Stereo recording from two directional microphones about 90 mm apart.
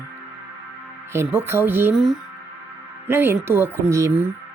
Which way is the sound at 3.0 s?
25° right (ahead or behind).